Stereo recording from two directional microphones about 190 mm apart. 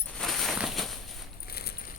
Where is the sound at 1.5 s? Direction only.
55° left (ahead or behind).